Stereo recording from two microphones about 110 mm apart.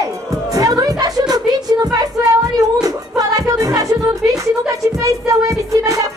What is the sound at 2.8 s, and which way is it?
Music, 35° right (ahead or behind).